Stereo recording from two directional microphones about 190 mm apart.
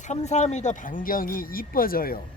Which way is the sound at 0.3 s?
35° left (ahead or behind).